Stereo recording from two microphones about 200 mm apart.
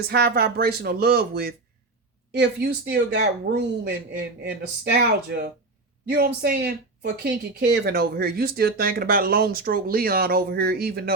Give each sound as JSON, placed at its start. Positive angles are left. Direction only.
{"t": 0.1, "sound": "speech", "side_deg": -55}